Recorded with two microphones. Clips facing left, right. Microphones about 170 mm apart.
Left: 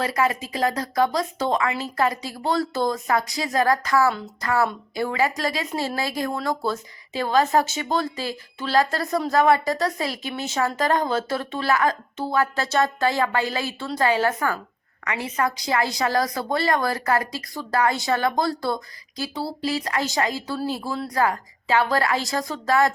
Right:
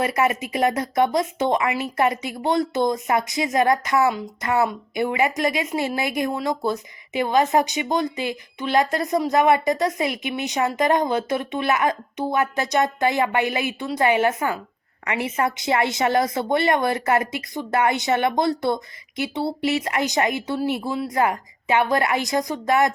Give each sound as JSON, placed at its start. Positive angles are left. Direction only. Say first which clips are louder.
{"t": 0.2, "sound": "speech", "louder": "right 1 dB", "side_deg": -20}